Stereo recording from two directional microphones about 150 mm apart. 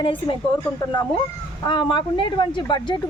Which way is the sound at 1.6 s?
30° left (ahead or behind).